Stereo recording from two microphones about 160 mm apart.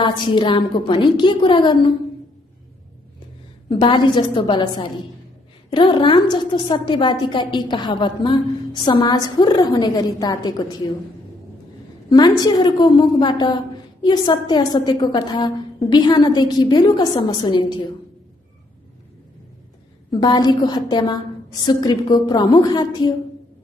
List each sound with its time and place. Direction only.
0.0 s a woman's voice: 30° left (ahead or behind)
3.6 s a woman's voice: 30° left (ahead or behind)
12.1 s a woman's voice: 25° left (ahead or behind)
20.2 s a woman's voice: 25° left (ahead or behind)